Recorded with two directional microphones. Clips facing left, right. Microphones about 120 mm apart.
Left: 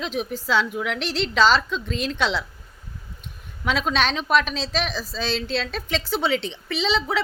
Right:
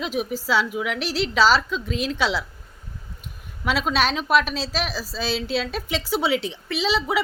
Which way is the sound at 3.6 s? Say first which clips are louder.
Right 1 dB; 5° right (ahead or behind).